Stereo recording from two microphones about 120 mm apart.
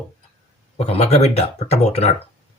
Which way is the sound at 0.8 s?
60° left (ahead or behind).